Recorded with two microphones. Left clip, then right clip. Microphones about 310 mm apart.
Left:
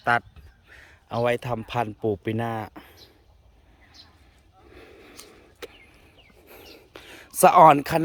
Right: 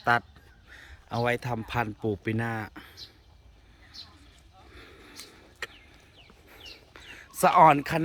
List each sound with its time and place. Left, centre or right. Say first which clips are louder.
0.0 s speech: left 2 dB; centre
4.7 s a sound: left 2 dB; centre
6.5 s bird: left 2 dB; left